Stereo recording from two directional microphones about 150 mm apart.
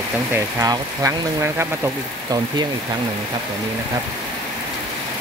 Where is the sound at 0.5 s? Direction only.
20° right (ahead or behind).